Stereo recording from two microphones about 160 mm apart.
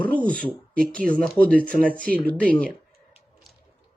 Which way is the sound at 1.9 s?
10° left (ahead or behind).